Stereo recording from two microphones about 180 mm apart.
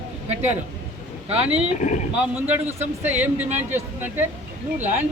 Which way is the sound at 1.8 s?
45° left (ahead or behind).